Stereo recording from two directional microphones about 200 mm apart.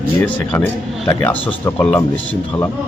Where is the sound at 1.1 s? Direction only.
10° left (ahead or behind).